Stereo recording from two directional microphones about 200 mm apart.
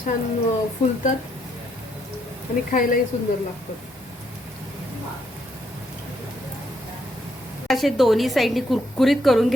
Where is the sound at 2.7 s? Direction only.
45° left (ahead or behind).